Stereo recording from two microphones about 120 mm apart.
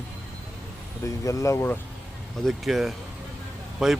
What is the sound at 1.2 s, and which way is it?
Speech, 25° left (ahead or behind).